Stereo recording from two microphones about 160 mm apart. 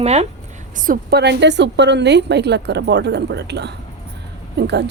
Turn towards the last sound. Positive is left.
turn(degrees=-90)